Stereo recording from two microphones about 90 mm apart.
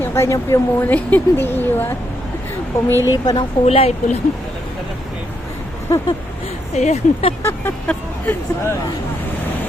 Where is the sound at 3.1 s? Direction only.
50° left (ahead or behind).